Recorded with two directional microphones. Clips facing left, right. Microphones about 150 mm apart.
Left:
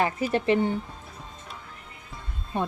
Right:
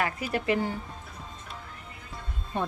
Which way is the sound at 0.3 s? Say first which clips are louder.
Left 4 dB; 25° left (ahead or behind).